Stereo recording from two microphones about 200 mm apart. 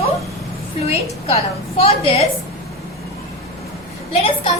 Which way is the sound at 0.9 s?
30° left (ahead or behind).